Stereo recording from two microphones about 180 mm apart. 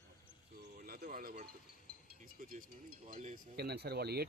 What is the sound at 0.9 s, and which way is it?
Speech, 55° right (ahead or behind).